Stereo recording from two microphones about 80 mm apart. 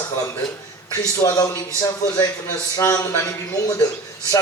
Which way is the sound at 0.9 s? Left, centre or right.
Left.